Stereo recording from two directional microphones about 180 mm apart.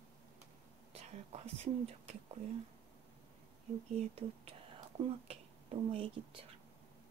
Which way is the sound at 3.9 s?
35° right (ahead or behind).